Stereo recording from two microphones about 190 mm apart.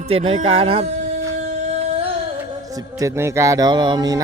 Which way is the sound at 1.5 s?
30° right (ahead or behind).